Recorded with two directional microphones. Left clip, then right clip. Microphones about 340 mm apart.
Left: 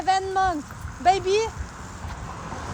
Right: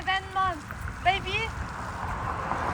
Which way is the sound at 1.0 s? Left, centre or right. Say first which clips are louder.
Left 6 dB; left.